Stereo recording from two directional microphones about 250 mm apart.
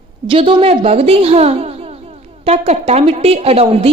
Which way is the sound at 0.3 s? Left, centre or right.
Right.